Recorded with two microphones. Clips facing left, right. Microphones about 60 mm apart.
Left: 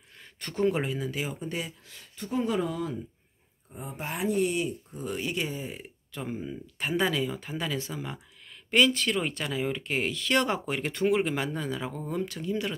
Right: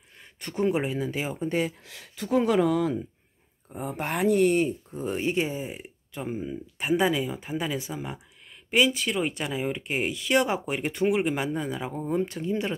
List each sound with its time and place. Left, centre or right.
0.2 s speech: centre; by 1.7 s right
1.7 s speech: right
3.7 s speech: right
4.6 s speech: right